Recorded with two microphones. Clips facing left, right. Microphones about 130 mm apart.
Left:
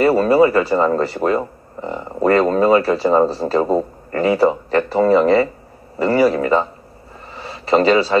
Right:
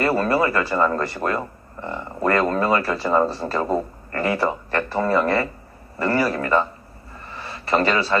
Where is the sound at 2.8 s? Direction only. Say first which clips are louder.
Left 5 dB; 25° left (ahead or behind).